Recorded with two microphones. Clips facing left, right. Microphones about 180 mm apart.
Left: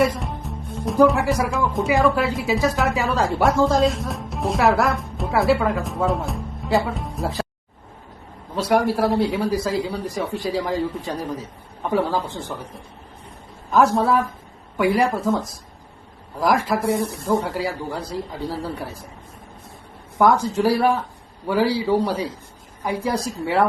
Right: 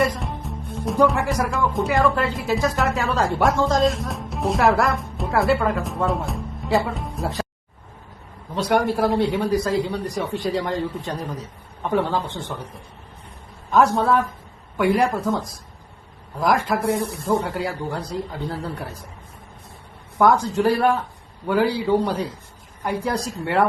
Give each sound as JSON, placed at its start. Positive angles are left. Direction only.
{"t": 0.0, "sound": "speech", "side_deg": 0}
{"t": 8.5, "sound": "speech", "side_deg": 0}
{"t": 13.7, "sound": "speech", "side_deg": 0}
{"t": 20.1, "sound": "speech", "side_deg": 0}